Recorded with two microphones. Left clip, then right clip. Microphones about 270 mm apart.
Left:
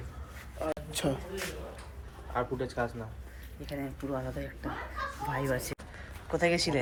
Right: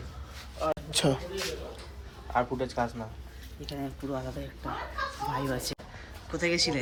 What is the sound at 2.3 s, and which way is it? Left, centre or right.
Speech, centre.